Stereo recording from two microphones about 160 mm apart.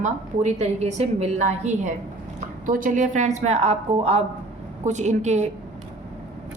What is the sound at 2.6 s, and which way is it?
A woman's voice, 55° right (ahead or behind).